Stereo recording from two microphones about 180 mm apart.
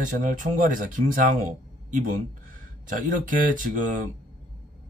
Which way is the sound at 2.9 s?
50° right (ahead or behind).